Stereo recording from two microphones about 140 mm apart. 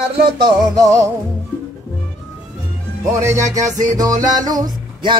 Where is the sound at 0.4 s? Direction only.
25° right (ahead or behind).